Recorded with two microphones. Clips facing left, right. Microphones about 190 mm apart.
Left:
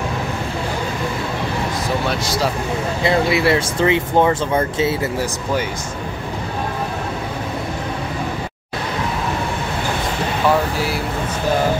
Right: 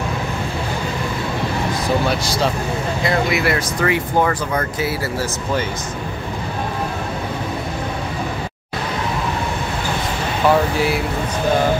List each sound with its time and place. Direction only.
2.0 s speech: 5° left (ahead or behind)
3.0 s speech: 30° left (ahead or behind)